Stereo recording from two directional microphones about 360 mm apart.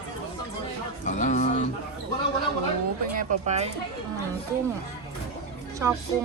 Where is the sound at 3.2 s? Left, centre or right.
Right.